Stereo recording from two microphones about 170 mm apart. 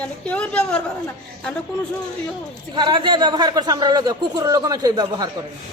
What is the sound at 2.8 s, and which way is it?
A man's voice, 25° right (ahead or behind).